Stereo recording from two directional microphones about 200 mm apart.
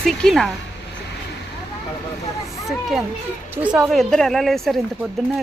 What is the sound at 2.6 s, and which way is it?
Speech, centre (ahead or behind).